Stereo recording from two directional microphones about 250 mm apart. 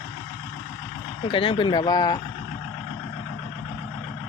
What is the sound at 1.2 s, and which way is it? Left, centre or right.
Speech, left.